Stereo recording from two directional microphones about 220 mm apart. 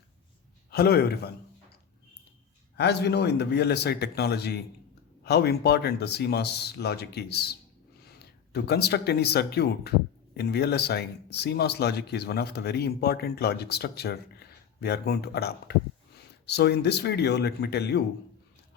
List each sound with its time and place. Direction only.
0.7 s speech: 45° left (ahead or behind)
2.7 s speech: 50° left (ahead or behind)